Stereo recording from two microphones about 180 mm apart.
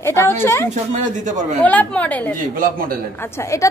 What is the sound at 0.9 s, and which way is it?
Speech, 40° right (ahead or behind).